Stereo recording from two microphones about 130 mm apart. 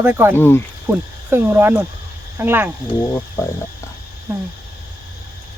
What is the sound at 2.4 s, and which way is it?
Speech, 15° right (ahead or behind).